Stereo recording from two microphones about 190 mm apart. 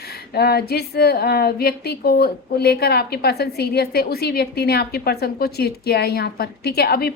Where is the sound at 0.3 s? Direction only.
55° left (ahead or behind).